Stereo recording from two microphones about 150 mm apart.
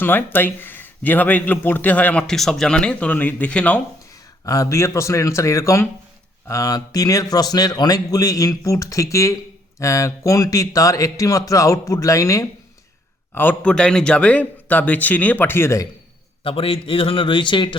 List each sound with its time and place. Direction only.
0.0 s a man's voice: 15° left (ahead or behind)
4.4 s a man's voice: 20° left (ahead or behind)
16.4 s a man's voice: 40° left (ahead or behind)